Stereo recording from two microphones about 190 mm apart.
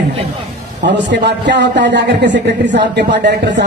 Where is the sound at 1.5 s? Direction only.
65° right (ahead or behind).